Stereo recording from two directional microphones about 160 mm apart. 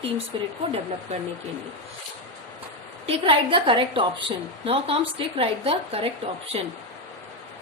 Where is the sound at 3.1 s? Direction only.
35° right (ahead or behind).